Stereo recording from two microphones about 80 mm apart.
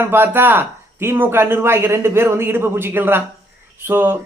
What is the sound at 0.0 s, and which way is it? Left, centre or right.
Speech, right.